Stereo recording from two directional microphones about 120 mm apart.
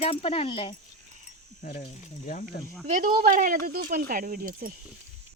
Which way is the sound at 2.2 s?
90° left.